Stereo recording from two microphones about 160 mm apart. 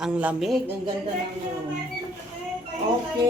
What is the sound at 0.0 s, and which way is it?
Speech, 5° right (ahead or behind).